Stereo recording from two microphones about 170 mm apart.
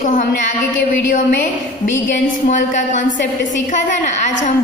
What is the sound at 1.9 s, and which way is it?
A woman's voice, 50° left (ahead or behind).